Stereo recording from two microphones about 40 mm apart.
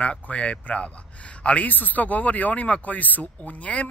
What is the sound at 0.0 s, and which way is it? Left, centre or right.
Speech, left.